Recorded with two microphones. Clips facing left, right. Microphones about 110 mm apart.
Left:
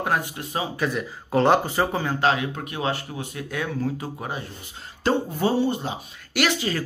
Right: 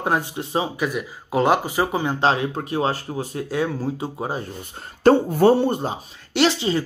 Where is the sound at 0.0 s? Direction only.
25° right (ahead or behind).